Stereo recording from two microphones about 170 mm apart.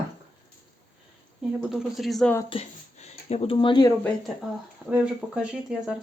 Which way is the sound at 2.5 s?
35° left (ahead or behind).